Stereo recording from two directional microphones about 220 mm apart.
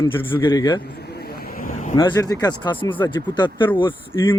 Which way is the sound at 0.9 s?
45° left (ahead or behind).